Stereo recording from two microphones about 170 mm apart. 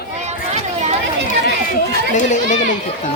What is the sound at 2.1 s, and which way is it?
Speech, 45° left (ahead or behind).